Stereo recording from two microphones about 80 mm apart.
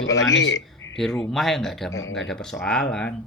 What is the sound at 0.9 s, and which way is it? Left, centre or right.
Speech, centre.